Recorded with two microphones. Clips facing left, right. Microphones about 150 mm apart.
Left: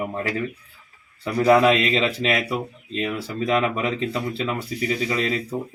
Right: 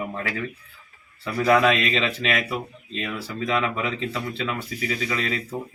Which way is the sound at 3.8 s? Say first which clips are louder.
Left 3 dB; 20° left (ahead or behind).